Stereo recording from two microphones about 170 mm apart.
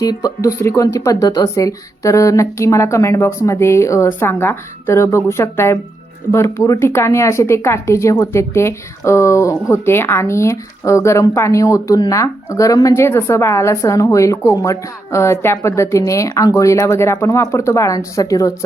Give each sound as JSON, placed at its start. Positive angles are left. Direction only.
{"t": 0.0, "sound": "speech", "side_deg": 20}